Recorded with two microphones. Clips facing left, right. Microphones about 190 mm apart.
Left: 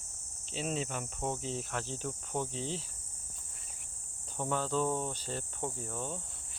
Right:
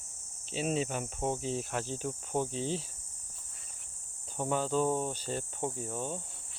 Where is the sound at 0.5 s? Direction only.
10° right (ahead or behind).